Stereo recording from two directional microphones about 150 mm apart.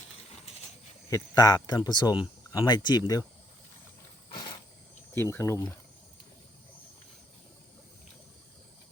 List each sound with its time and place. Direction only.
1.1 s speech: 25° left (ahead or behind)
4.3 s wild animals: 30° left (ahead or behind)
5.1 s speech: 15° left (ahead or behind)